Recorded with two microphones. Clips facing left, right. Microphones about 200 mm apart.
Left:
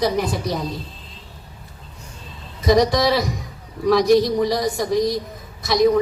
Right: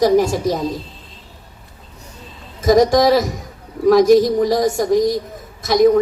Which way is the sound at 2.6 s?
45° right (ahead or behind).